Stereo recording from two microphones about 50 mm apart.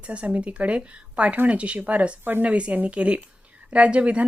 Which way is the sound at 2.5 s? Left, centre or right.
Right.